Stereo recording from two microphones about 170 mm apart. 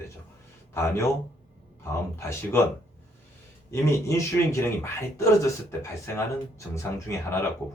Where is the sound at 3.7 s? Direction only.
15° left (ahead or behind).